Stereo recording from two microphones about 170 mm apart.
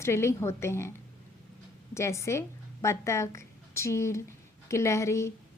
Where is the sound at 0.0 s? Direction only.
15° left (ahead or behind).